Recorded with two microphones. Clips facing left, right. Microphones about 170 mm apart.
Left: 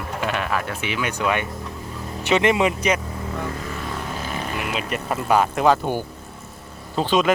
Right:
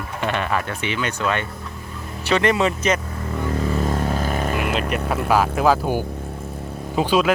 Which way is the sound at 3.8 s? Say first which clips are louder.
Right 7 dB; 45° right (ahead or behind).